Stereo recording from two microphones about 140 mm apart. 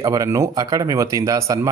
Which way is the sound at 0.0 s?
25° right (ahead or behind).